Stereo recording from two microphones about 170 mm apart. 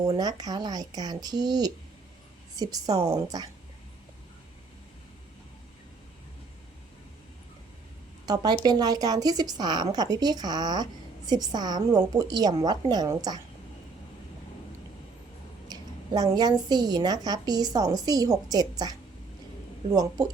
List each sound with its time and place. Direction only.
0.1 s a woman's voice: 20° right (ahead or behind)
8.3 s a woman's voice: 25° right (ahead or behind)
15.7 s a woman's voice: 25° right (ahead or behind)